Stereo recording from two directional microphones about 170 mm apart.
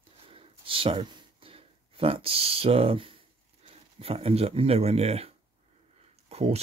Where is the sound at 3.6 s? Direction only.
35° right (ahead or behind).